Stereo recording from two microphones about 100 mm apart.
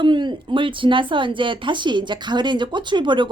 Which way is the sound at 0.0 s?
50° right (ahead or behind).